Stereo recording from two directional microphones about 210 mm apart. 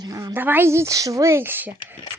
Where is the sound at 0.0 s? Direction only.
15° right (ahead or behind).